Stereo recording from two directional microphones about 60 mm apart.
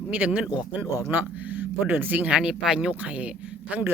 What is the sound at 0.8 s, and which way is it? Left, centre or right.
Speech, right.